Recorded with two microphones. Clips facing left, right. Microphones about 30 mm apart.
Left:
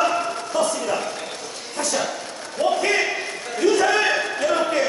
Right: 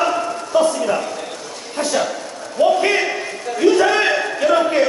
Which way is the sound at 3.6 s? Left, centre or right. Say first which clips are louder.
Right 4 dB; right.